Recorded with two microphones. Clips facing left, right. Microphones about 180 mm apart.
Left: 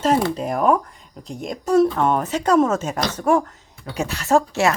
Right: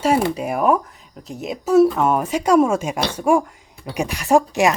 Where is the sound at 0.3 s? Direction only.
10° right (ahead or behind).